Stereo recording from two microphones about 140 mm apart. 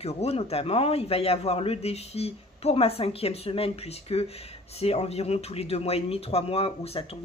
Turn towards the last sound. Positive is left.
turn(degrees=45)  # may be behind; listen again after turning